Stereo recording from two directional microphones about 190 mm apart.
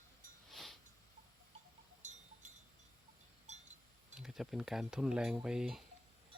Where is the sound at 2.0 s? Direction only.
40° right (ahead or behind).